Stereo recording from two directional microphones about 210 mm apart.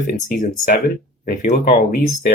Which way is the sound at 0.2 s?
35° left (ahead or behind).